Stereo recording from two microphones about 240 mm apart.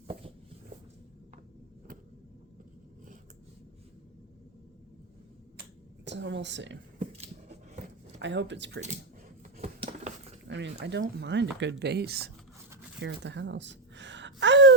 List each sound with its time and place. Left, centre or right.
6.1 s a woman's voice: right
7.0 s scissors: right
8.2 s speech: right
9.4 s a sound: right
10.5 s speech: right
13.0 s a sound: right